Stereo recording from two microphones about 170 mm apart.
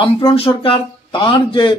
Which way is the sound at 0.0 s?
30° left (ahead or behind).